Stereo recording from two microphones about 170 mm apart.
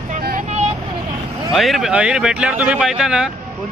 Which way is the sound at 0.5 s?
40° right (ahead or behind).